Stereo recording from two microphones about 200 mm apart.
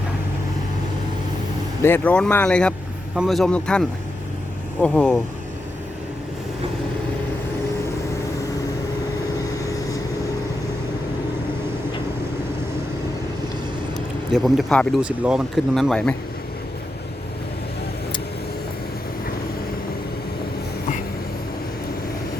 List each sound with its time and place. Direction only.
1.8 s speech: 10° left (ahead or behind)
9.6 s vehicle: 15° left (ahead or behind)
14.3 s speech: centre (ahead or behind)